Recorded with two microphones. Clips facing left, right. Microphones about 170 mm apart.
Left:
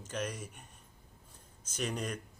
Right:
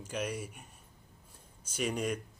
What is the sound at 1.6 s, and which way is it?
Speech, 10° right (ahead or behind).